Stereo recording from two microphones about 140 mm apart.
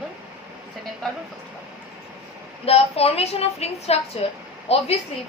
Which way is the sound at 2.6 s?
45° left (ahead or behind).